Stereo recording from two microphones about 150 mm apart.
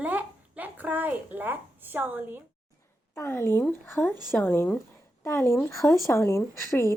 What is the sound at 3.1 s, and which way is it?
Speech, 15° left (ahead or behind).